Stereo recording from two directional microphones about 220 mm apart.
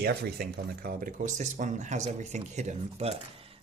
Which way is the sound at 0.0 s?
45° right (ahead or behind).